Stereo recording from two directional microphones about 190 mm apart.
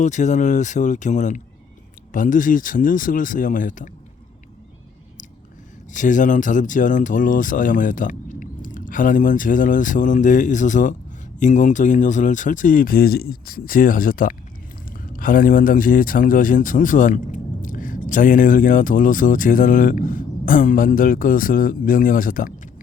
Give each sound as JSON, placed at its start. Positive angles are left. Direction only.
{"t": 0.0, "sound": "speech", "side_deg": 40}
{"t": 5.9, "sound": "speech", "side_deg": 40}